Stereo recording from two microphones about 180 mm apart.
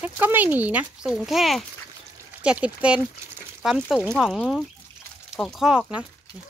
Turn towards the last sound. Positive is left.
turn(degrees=-5)  # may be behind; listen again after turning